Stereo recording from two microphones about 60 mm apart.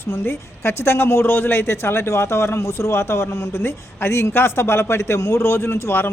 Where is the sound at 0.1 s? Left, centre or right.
Left.